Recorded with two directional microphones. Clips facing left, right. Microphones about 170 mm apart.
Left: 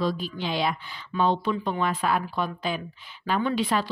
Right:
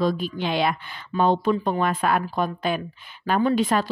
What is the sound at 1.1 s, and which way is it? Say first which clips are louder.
Speech: right 4 dB; 50° right (ahead or behind).